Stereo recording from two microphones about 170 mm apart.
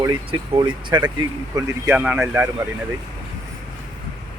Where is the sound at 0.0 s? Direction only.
30° right (ahead or behind).